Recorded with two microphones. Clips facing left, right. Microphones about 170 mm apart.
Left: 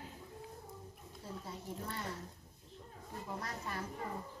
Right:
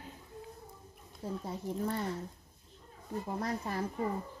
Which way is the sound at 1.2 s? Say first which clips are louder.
Right 9 dB; 60° right (ahead or behind).